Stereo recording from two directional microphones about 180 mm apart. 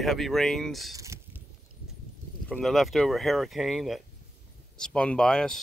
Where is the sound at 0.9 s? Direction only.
15° right (ahead or behind).